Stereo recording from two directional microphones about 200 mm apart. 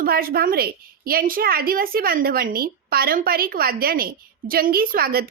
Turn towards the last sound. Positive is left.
turn(degrees=-50)  # may be behind; listen again after turning